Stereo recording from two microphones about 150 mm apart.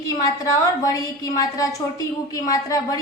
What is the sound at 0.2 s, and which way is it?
A woman's voice, 25° left (ahead or behind).